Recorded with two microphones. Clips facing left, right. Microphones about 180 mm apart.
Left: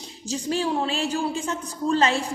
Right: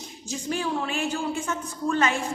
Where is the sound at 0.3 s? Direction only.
35° left (ahead or behind).